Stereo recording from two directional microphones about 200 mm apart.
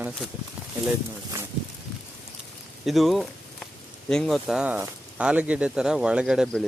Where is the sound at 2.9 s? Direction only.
Centre (ahead or behind).